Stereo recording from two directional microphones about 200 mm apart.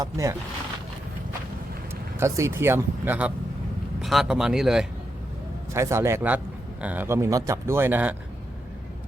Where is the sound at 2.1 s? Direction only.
15° right (ahead or behind).